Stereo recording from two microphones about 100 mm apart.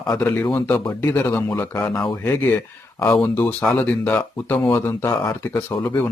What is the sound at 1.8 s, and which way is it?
Speech, 15° left (ahead or behind).